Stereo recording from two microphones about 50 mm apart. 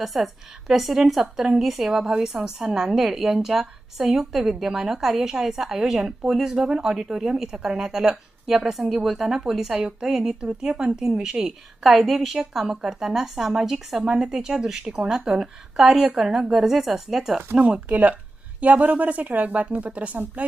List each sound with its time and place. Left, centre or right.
0.0 s a woman's voice: centre
17.6 s a woman's voice: right